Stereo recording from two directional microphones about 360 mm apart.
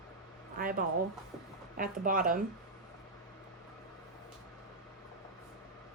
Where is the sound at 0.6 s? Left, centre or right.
Right.